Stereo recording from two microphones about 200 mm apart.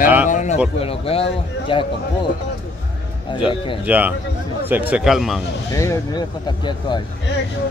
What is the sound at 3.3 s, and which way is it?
Speech, 25° left (ahead or behind).